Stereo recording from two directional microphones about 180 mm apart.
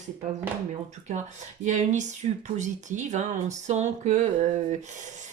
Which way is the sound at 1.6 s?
45° right (ahead or behind).